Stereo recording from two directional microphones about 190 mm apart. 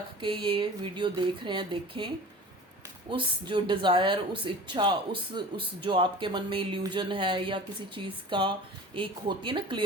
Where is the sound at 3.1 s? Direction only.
25° right (ahead or behind).